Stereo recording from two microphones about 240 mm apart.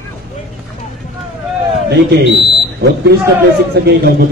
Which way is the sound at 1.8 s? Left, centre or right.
Right.